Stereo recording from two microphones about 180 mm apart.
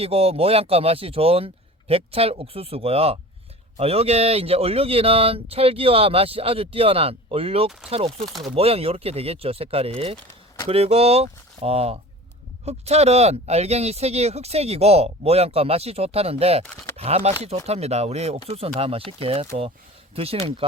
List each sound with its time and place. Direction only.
0.0 s speech: 35° right (ahead or behind)